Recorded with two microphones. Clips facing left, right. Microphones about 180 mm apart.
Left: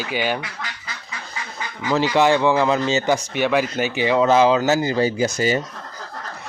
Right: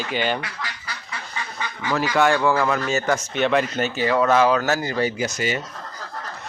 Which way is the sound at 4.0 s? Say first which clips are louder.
Left 2 dB; 20° left (ahead or behind).